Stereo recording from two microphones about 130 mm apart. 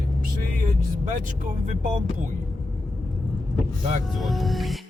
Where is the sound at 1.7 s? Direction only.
90° right.